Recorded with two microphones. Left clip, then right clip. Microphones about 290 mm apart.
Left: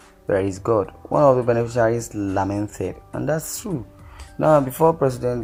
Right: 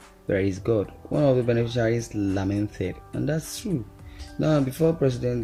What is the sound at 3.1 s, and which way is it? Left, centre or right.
Speech, left.